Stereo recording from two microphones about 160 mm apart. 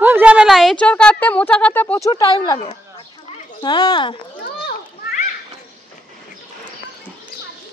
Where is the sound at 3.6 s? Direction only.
25° left (ahead or behind).